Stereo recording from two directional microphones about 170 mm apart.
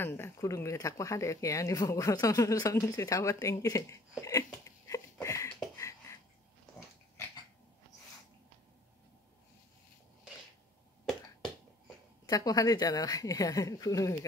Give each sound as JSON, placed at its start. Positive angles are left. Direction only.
{"t": 0.0, "sound": "speech", "side_deg": 15}
{"t": 4.5, "sound": "a sound", "side_deg": 20}
{"t": 12.3, "sound": "speech", "side_deg": 20}